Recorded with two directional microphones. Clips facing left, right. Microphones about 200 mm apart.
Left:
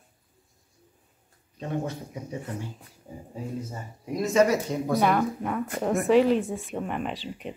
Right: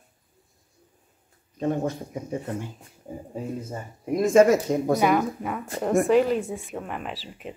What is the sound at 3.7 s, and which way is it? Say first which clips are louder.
Speech: right 5 dB; 50° right (ahead or behind).